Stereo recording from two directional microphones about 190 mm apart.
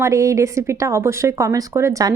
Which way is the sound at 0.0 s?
15° right (ahead or behind).